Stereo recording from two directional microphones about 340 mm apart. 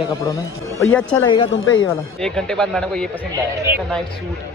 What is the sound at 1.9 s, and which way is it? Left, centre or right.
Speech, centre.